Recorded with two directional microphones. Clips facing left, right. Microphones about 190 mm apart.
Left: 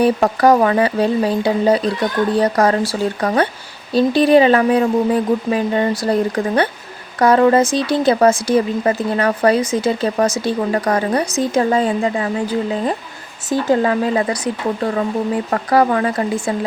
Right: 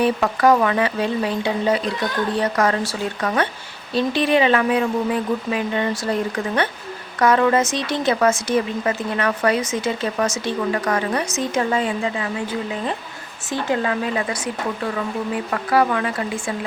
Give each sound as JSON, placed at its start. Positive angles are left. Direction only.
{"t": 0.0, "sound": "a woman's voice", "side_deg": 35}
{"t": 13.5, "sound": "a woman's voice", "side_deg": 35}